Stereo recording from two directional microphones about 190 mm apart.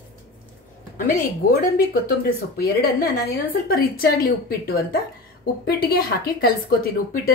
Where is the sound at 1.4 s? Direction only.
50° left (ahead or behind).